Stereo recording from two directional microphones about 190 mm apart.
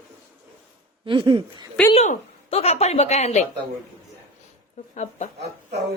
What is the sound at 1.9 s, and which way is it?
A woman's voice, 35° left (ahead or behind).